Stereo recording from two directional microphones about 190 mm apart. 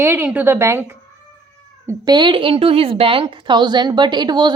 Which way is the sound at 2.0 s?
25° right (ahead or behind).